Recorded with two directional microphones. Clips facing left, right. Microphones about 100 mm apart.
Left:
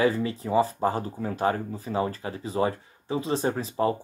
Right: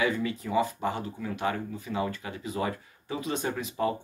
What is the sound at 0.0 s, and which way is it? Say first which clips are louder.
Speech: left 4 dB; 35° left (ahead or behind).